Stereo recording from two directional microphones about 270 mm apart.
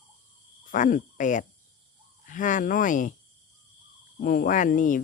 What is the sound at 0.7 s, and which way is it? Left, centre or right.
Cricket, left.